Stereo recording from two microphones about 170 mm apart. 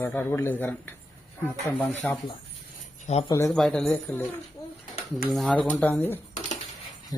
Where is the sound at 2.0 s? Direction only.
10° left (ahead or behind).